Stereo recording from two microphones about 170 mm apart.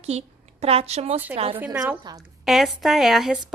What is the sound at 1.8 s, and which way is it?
Speech, 25° right (ahead or behind).